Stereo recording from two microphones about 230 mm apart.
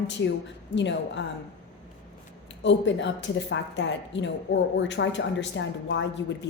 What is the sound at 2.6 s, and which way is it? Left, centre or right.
A woman's voice, left.